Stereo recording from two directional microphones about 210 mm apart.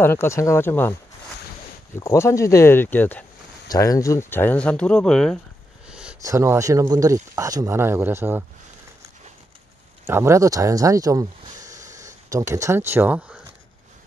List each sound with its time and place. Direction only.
0.0 s speech: 10° left (ahead or behind)
2.0 s speech: 15° left (ahead or behind)
6.2 s speech: 15° right (ahead or behind)
10.0 s speech: 15° right (ahead or behind)